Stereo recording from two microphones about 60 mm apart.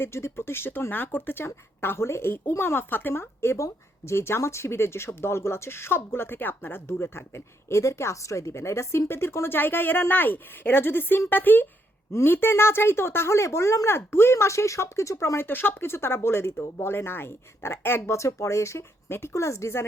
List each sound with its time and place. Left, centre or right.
0.0 s speech: left
15.4 s speech: left
18.1 s speech: left